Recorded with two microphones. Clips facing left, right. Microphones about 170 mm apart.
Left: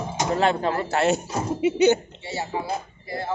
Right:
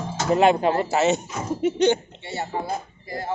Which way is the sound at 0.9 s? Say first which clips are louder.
Right 1 dB; centre (ahead or behind).